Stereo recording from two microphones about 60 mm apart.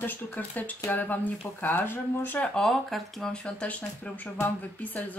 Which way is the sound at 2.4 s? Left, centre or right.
Centre.